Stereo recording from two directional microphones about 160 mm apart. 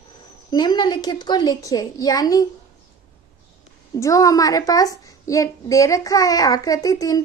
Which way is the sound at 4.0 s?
20° left (ahead or behind).